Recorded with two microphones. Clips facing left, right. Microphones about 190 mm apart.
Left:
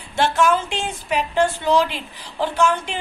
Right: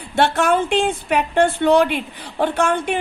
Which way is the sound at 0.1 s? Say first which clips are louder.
Right 1 dB; 60° right (ahead or behind).